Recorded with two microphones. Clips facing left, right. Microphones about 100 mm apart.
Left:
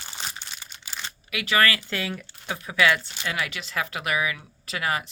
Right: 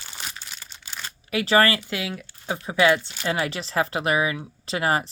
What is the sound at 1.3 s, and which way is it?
Speech, 35° right (ahead or behind).